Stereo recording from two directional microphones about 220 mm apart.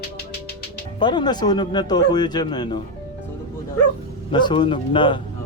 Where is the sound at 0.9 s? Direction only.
20° left (ahead or behind).